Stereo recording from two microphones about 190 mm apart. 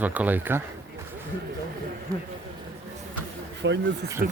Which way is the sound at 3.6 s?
70° right (ahead or behind).